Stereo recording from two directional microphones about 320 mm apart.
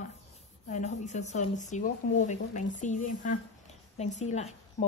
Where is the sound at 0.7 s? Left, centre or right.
Left.